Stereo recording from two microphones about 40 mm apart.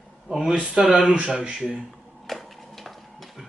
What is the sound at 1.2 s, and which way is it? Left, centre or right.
Speech, right.